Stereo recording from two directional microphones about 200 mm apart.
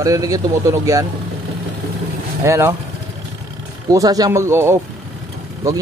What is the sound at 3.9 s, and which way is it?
Speech, 20° right (ahead or behind).